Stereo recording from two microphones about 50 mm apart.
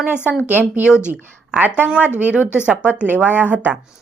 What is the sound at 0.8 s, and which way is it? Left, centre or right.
Speech, right.